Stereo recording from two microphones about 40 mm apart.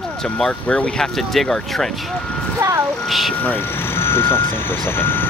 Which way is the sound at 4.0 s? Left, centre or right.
Left.